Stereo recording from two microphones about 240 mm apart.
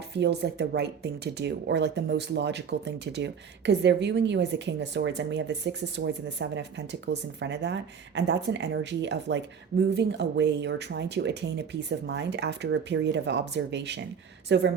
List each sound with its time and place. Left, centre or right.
0.2 s speech: right